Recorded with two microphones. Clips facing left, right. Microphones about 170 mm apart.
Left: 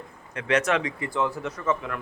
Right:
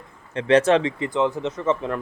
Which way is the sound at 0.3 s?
30° right (ahead or behind).